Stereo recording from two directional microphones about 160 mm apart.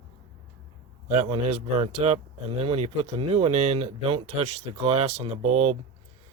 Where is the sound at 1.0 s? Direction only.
45° right (ahead or behind).